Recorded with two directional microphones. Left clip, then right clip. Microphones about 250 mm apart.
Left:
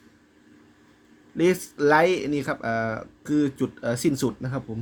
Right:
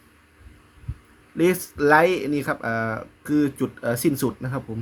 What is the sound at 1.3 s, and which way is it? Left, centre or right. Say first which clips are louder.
Speech: right 1 dB; centre.